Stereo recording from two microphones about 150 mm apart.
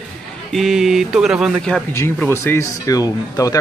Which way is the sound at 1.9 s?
15° left (ahead or behind).